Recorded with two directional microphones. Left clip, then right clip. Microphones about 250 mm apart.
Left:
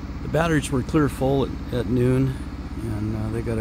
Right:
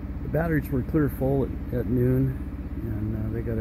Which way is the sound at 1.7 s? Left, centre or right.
Centre.